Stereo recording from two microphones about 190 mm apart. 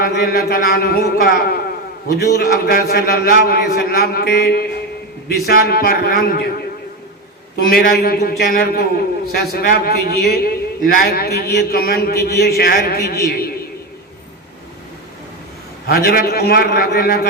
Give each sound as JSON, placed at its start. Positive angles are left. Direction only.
{"t": 0.0, "sound": "a man's voice", "side_deg": 50}
{"t": 7.5, "sound": "a man's voice", "side_deg": 55}
{"t": 15.9, "sound": "a man's voice", "side_deg": 50}